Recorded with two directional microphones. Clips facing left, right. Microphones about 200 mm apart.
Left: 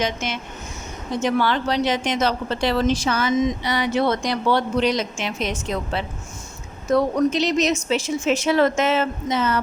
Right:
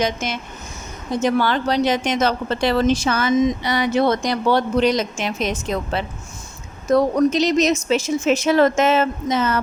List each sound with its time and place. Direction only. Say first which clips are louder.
0.0 s speech: right 2 dB; 40° right (ahead or behind)